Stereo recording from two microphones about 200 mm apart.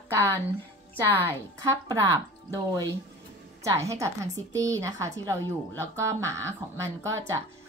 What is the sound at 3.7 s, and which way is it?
A woman's voice, 15° right (ahead or behind).